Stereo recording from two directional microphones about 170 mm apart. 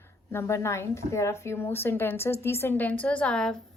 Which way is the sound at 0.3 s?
15° left (ahead or behind).